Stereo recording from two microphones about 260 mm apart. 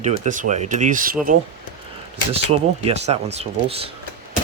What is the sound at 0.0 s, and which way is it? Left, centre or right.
Speech, right.